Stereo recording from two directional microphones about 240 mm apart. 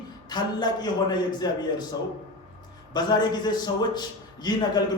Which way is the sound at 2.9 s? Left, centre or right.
Centre.